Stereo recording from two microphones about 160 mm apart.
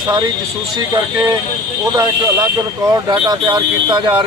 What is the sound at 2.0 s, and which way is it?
Speech, 25° right (ahead or behind).